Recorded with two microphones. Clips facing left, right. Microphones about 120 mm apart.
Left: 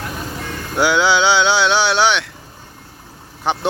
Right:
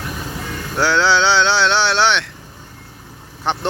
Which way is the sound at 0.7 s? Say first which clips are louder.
Left 1 dB; 10° left (ahead or behind).